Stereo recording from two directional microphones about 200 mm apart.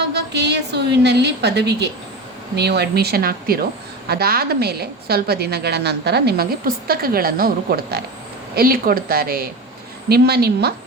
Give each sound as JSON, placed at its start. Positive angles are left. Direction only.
{"t": 0.0, "sound": "a woman's voice", "side_deg": -60}